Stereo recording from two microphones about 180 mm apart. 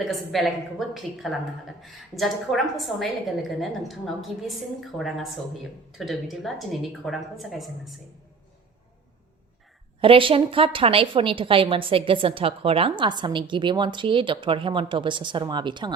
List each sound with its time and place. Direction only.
0.0 s a woman's voice: centre (ahead or behind)
10.0 s a woman's voice: 30° right (ahead or behind)